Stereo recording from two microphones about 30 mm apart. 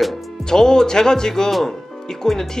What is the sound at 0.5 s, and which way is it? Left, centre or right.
Speech, centre.